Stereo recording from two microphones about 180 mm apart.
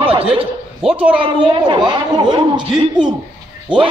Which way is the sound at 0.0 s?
30° right (ahead or behind).